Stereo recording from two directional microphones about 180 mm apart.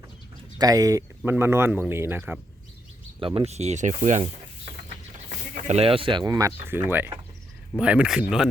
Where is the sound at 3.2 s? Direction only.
35° right (ahead or behind).